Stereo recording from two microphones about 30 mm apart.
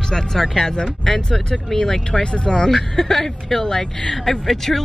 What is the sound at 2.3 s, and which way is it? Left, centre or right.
Speech, left.